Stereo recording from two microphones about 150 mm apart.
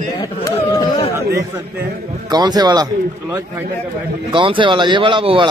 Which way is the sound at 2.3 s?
25° right (ahead or behind).